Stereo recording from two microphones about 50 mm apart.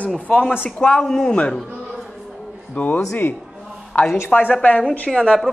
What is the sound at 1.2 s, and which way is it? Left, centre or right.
Speech, left.